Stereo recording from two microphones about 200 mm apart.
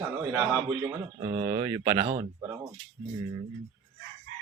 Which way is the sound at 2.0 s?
30° right (ahead or behind).